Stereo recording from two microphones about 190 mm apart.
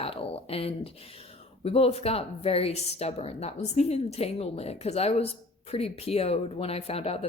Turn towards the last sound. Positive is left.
turn(degrees=30)  # may be behind; listen again after turning